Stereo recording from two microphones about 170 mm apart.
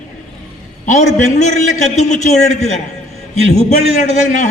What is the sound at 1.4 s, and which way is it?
A man's voice, 45° left (ahead or behind).